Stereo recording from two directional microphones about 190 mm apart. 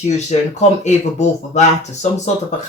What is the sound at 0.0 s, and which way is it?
Speech, 35° left (ahead or behind).